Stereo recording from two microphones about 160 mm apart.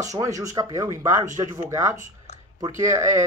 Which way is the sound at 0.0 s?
20° right (ahead or behind).